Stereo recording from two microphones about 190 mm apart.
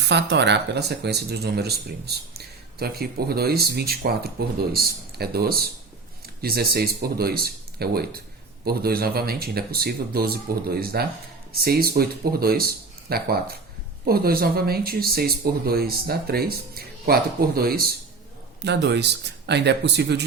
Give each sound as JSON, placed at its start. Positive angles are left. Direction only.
{"t": 0.0, "sound": "speech", "side_deg": -65}
{"t": 18.6, "sound": "speech", "side_deg": -65}